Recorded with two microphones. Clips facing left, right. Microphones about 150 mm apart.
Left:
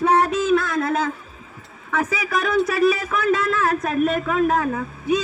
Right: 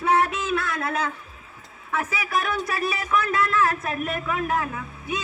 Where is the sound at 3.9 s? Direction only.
35° left (ahead or behind).